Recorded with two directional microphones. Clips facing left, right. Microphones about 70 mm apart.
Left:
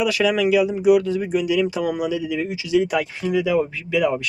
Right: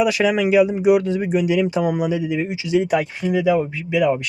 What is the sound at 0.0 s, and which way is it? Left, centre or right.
Speech, right.